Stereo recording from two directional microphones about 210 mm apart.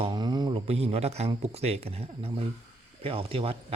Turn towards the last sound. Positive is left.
turn(degrees=-25)  # may be behind; listen again after turning